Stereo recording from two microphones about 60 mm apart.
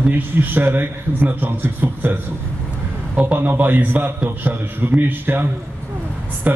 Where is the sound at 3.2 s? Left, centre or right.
Right.